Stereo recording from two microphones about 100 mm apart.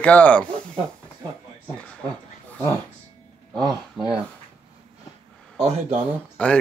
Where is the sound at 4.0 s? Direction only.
5° right (ahead or behind).